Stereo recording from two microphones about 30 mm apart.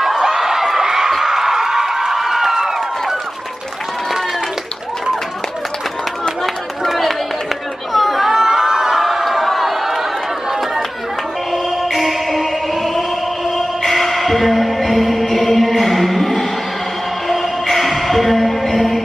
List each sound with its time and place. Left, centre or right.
0.4 s a sound: centre
6.2 s run: centre
6.9 s a sound: centre
7.9 s chatter: centre
8.3 s crowd: centre
8.9 s crowd: centre
11.5 s music: centre